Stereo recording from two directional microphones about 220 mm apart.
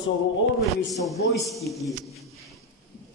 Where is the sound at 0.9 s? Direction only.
Centre (ahead or behind).